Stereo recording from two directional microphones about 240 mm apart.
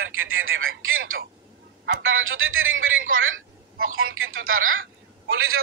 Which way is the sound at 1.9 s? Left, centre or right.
Right.